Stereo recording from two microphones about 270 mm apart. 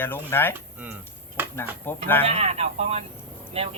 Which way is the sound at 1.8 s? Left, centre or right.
Centre.